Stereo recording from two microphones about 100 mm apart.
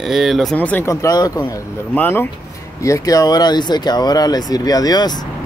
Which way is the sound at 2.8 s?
35° left (ahead or behind).